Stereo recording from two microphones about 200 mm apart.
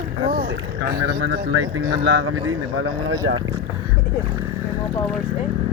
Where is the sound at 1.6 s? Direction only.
75° right (ahead or behind).